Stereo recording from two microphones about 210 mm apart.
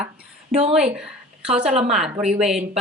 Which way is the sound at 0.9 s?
5° right (ahead or behind).